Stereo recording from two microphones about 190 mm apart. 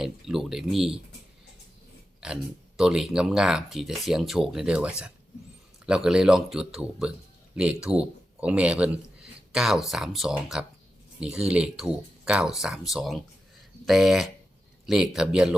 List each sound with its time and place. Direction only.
0.0 s speech: centre (ahead or behind)
2.2 s speech: 5° right (ahead or behind)